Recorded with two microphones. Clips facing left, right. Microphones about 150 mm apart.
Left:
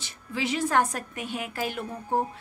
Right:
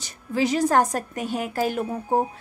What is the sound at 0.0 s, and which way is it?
Speech, 40° right (ahead or behind).